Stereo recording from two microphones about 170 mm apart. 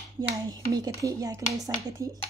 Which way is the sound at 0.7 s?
20° right (ahead or behind).